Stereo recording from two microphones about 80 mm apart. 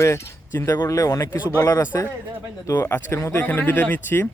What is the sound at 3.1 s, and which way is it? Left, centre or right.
Speech, left.